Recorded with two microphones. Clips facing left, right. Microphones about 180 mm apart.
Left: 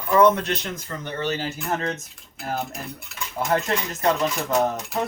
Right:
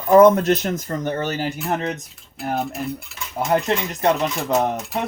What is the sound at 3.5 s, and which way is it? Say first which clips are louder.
Speech: right 4 dB; 20° right (ahead or behind).